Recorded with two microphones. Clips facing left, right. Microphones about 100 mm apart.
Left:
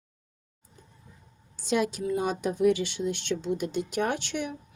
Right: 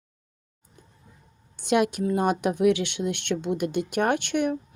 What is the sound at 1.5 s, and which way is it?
A woman's voice, 65° right (ahead or behind).